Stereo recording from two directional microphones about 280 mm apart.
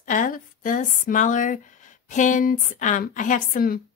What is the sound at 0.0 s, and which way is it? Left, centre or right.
A woman's voice, left.